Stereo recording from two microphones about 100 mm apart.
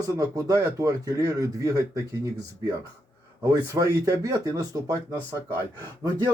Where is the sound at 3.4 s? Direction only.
35° right (ahead or behind).